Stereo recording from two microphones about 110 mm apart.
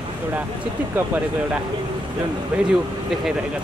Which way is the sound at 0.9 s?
15° right (ahead or behind).